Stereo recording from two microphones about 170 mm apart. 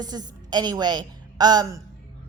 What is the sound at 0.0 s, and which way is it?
A woman's voice, 25° right (ahead or behind).